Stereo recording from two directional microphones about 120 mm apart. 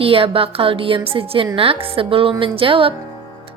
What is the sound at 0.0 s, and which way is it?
Speech, 50° right (ahead or behind).